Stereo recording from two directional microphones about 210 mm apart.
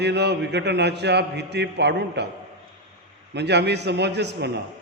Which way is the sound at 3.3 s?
55° right (ahead or behind).